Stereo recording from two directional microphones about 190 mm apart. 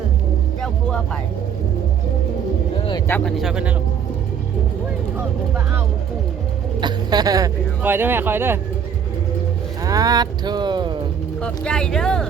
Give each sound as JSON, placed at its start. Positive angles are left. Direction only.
{"t": 0.6, "sound": "music", "side_deg": 5}
{"t": 3.1, "sound": "speech", "side_deg": 0}
{"t": 6.7, "sound": "speech", "side_deg": -20}
{"t": 9.8, "sound": "speech", "side_deg": -20}
{"t": 11.4, "sound": "speech", "side_deg": 5}